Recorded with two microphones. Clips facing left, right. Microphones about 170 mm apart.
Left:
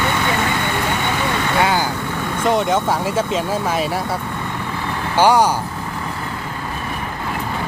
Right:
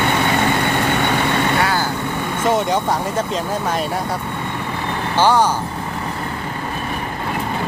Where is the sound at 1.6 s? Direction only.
15° left (ahead or behind).